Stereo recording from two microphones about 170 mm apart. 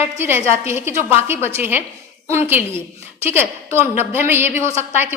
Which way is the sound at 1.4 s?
35° left (ahead or behind).